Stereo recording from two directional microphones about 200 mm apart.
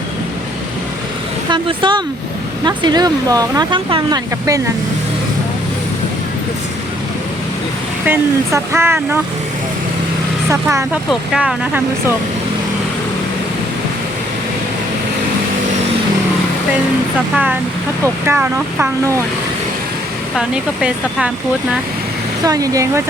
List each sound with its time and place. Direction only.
1.5 s speech: 25° right (ahead or behind)
8.0 s speech: 10° right (ahead or behind)
10.5 s speech: 15° right (ahead or behind)
11.1 s speech: 5° right (ahead or behind)
17.3 s speech: 10° right (ahead or behind)
20.3 s speech: 5° right (ahead or behind)
22.4 s speech: 15° right (ahead or behind)